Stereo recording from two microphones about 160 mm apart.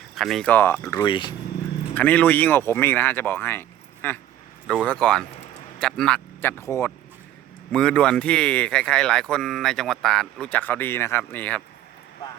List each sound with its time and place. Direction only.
0.2 s speech: centre (ahead or behind); by 1.3 s 30° left (ahead or behind)
2.0 s speech: 10° left (ahead or behind)
7.7 s speech: 5° left (ahead or behind)